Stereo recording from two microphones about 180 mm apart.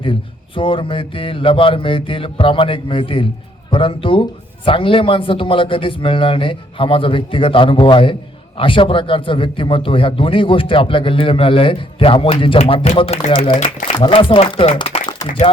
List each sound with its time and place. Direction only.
0.0 s a man's voice: 30° left (ahead or behind)